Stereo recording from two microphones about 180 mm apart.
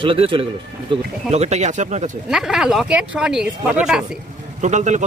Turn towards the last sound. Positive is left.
turn(degrees=-40)  # may be behind; listen again after turning